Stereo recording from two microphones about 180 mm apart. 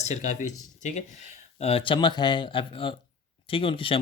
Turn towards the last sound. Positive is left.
turn(degrees=30)  # may be behind; listen again after turning